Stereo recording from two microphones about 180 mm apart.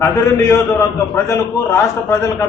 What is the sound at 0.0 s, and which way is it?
A man's voice, 15° left (ahead or behind).